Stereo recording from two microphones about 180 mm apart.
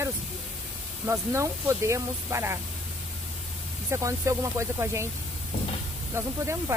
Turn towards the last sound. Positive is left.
turn(degrees=-15)  # may be behind; listen again after turning